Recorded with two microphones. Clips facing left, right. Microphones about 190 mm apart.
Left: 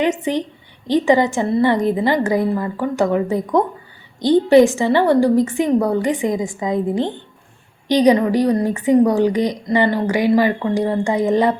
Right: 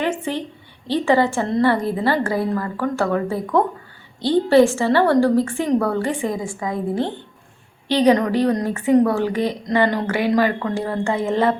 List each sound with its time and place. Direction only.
0.0 s a woman's voice: 15° left (ahead or behind)